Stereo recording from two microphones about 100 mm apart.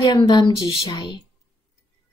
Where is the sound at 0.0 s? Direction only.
50° left (ahead or behind).